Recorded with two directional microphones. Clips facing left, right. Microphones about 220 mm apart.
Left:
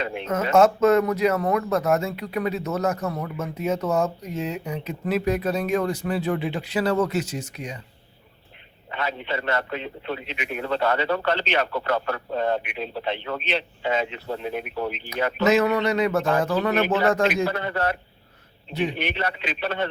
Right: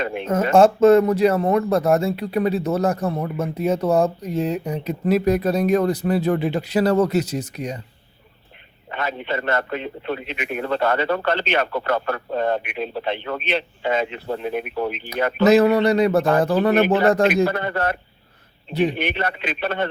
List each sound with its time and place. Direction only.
0.0 s a man's voice: 50° right (ahead or behind)
0.5 s speech: 30° right (ahead or behind)
8.9 s a man's voice: 50° right (ahead or behind)
15.4 s speech: 35° right (ahead or behind)
16.7 s a man's voice: 55° right (ahead or behind)
18.7 s speech: 35° right (ahead or behind)
18.9 s a man's voice: 50° right (ahead or behind)